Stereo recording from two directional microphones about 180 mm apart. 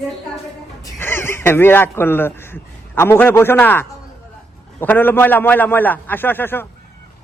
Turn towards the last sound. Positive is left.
turn(degrees=10)  # may be behind; listen again after turning